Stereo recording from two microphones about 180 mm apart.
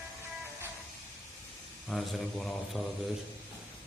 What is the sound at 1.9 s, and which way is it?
Speech, centre (ahead or behind).